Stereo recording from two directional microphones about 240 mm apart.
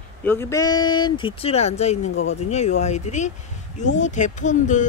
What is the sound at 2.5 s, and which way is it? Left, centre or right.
Speech, left.